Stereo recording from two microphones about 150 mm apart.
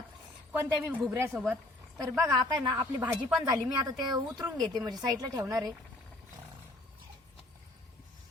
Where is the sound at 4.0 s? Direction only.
25° right (ahead or behind).